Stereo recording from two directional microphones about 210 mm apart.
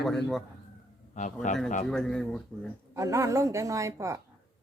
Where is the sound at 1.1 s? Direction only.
35° left (ahead or behind).